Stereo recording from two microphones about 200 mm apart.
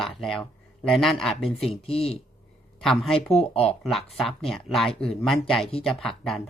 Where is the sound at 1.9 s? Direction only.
30° left (ahead or behind).